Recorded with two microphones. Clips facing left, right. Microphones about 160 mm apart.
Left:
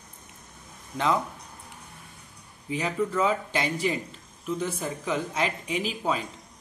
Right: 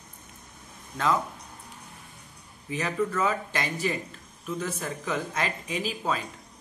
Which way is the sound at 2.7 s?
10° left (ahead or behind).